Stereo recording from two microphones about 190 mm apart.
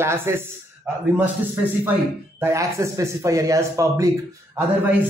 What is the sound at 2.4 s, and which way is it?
Speech, 15° right (ahead or behind).